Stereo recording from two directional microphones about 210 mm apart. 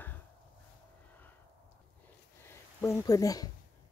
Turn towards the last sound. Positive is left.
turn(degrees=15)  # may be behind; listen again after turning